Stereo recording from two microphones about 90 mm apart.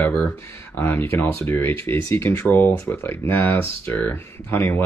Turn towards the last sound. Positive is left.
turn(degrees=25)  # may be behind; listen again after turning